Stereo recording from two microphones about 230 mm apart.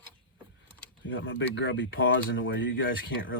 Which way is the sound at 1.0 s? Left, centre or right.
Left.